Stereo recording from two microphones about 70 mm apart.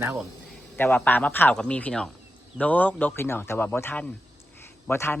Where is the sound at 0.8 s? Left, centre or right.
Left.